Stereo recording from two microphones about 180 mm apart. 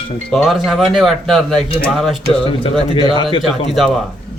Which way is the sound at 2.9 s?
25° left (ahead or behind).